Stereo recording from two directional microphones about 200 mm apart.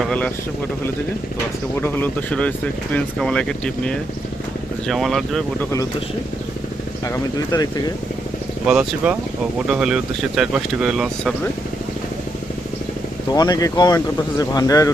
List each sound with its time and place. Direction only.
1.8 s speech: 10° left (ahead or behind)
7.0 s speech: 20° left (ahead or behind)
8.6 s speech: 5° right (ahead or behind)
13.3 s speech: 20° left (ahead or behind)